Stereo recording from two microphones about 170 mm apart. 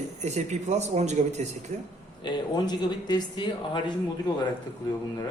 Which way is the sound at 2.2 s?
25° left (ahead or behind).